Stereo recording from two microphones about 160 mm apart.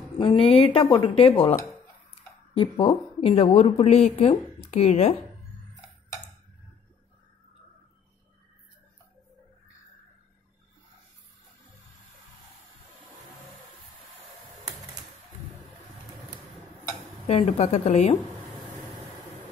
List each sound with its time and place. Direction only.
0.2 s speech: 35° left (ahead or behind)
2.5 s speech: 30° left (ahead or behind)
17.3 s speech: 40° left (ahead or behind)